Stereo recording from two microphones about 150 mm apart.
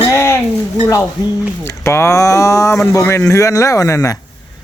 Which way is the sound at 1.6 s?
20° left (ahead or behind).